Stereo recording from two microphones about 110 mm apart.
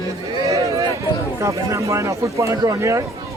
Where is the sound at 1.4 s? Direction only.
30° right (ahead or behind).